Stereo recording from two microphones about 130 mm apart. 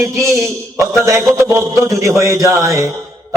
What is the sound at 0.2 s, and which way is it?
A man's voice, 20° right (ahead or behind).